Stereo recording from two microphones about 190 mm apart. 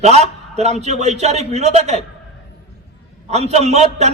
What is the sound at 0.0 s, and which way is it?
A man's voice, 35° right (ahead or behind).